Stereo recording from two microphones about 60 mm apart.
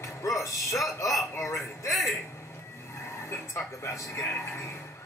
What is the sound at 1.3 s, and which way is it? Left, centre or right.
Speech, left.